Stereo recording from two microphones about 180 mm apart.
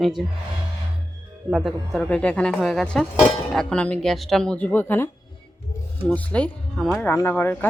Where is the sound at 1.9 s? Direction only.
5° left (ahead or behind).